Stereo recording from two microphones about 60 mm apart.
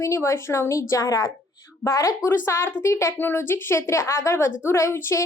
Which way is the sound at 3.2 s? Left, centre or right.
Left.